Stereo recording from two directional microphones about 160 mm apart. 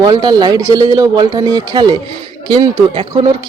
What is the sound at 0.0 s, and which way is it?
A woman's voice, 25° right (ahead or behind).